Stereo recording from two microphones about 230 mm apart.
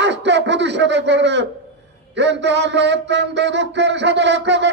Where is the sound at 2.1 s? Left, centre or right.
Right.